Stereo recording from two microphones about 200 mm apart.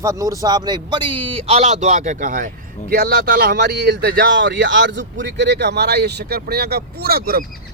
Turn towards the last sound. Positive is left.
turn(degrees=-50)  # may be behind; listen again after turning